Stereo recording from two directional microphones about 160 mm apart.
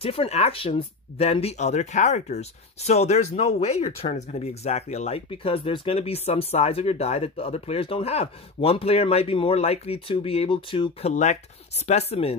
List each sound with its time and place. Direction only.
0.0 s speech: 35° left (ahead or behind)